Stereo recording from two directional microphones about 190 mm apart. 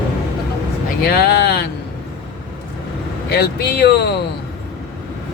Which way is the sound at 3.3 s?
55° left (ahead or behind).